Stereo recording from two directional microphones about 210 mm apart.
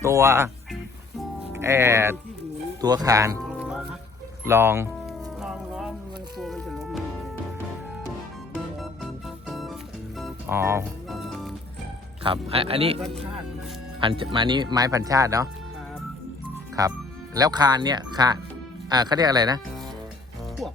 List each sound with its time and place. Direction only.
0.0 s speech: 15° right (ahead or behind)
1.5 s speech: 15° right (ahead or behind)
3.4 s music: 5° right (ahead or behind)
8.5 s music: centre (ahead or behind)
11.1 s music: centre (ahead or behind)
12.2 s speech: 25° right (ahead or behind)
14.0 s speech: 25° right (ahead or behind)
16.8 s speech: 15° right (ahead or behind)